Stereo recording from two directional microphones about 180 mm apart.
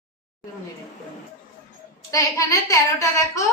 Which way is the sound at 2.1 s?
15° left (ahead or behind).